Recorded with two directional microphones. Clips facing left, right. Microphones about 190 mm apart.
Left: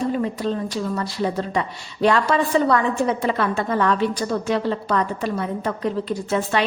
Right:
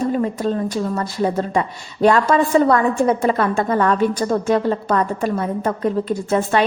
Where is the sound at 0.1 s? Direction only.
45° right (ahead or behind).